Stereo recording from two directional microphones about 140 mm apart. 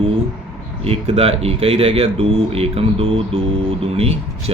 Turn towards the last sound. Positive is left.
turn(degrees=-45)  # may be behind; listen again after turning